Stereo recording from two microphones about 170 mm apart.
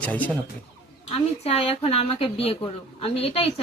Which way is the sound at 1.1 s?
35° left (ahead or behind).